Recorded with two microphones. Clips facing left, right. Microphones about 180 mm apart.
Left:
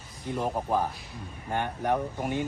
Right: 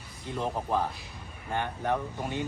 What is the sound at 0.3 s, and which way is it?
Speech, 10° left (ahead or behind).